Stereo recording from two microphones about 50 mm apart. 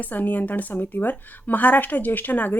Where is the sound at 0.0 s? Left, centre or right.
Left.